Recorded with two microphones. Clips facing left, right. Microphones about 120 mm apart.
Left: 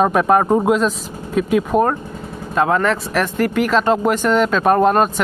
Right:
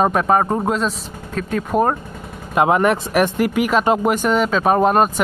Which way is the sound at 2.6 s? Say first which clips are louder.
Right 1 dB; 15° right (ahead or behind).